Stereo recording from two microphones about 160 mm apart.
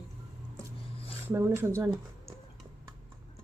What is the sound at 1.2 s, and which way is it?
Speech, 15° right (ahead or behind).